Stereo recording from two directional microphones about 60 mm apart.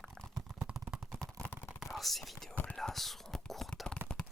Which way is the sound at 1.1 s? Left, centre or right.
Centre.